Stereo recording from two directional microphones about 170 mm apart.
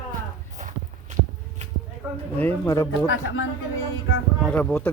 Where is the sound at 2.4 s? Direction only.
15° left (ahead or behind).